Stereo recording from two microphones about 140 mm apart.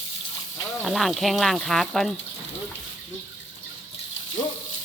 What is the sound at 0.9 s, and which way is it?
Speech, centre (ahead or behind).